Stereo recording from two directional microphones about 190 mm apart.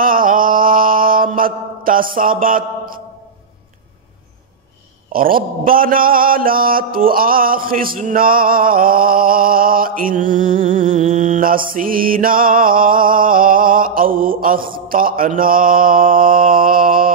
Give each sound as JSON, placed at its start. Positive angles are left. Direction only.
{"t": 0.0, "sound": "mantra", "side_deg": -45}
{"t": 5.1, "sound": "mantra", "side_deg": -50}